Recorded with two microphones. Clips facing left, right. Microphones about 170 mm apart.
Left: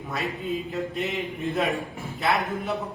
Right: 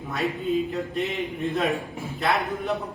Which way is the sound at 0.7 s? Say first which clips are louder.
Right 1 dB; centre (ahead or behind).